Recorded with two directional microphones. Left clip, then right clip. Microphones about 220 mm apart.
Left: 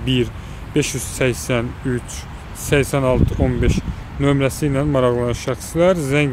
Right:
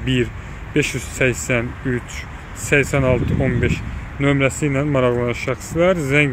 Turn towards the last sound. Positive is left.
turn(degrees=0)  # may be behind; listen again after turning